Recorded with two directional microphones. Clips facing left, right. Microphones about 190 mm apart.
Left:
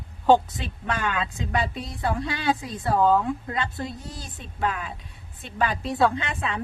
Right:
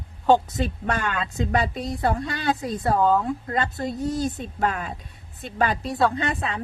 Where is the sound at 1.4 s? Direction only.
45° right (ahead or behind).